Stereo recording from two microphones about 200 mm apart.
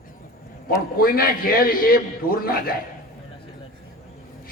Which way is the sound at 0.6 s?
45° left (ahead or behind).